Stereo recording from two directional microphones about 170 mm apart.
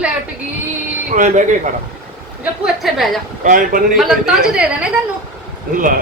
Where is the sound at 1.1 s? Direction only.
45° right (ahead or behind).